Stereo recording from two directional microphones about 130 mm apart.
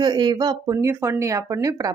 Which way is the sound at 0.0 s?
35° right (ahead or behind).